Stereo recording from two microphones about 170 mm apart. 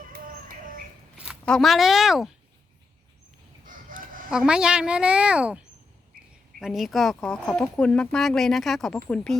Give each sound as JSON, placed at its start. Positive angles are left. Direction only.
{"t": 0.1, "sound": "bird", "side_deg": -55}
{"t": 1.5, "sound": "speech", "side_deg": 0}
{"t": 3.6, "sound": "crowing", "side_deg": -50}
{"t": 4.3, "sound": "speech", "side_deg": -5}